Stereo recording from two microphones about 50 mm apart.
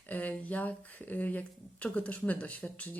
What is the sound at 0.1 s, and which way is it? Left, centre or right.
Speech, left.